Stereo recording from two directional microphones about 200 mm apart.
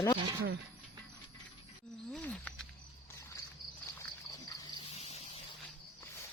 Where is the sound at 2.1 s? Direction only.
5° left (ahead or behind).